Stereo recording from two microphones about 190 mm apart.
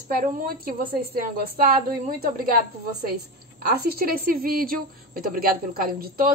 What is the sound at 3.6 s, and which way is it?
A woman's voice, 55° right (ahead or behind).